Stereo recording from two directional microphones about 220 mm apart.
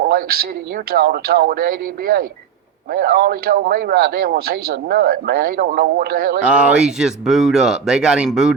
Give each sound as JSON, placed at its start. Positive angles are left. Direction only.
{"t": 0.0, "sound": "speech", "side_deg": -45}
{"t": 6.4, "sound": "speech", "side_deg": -5}